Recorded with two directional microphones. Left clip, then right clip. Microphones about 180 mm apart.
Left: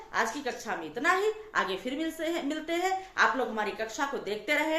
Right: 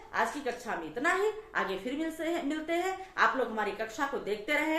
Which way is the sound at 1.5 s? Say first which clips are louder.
Left 2 dB; 25° left (ahead or behind).